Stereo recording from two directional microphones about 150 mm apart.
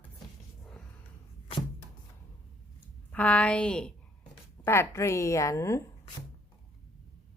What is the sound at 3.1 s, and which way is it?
A woman's voice, 10° left (ahead or behind).